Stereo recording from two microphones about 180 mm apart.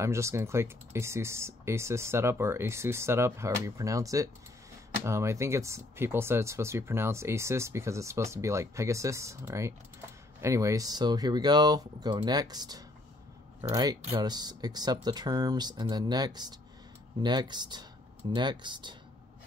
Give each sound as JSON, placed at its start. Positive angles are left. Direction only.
{"t": 0.0, "sound": "speech", "side_deg": -15}